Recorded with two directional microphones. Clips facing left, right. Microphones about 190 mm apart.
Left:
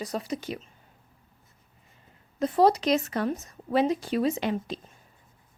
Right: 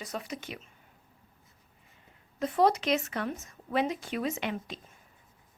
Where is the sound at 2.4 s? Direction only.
35° left (ahead or behind).